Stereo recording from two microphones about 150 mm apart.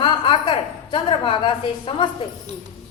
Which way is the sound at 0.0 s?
35° left (ahead or behind).